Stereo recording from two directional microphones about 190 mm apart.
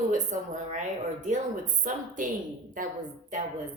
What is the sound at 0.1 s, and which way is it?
A woman's voice, 40° right (ahead or behind).